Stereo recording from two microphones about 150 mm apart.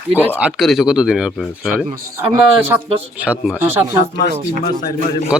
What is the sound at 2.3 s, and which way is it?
Speech, 15° right (ahead or behind).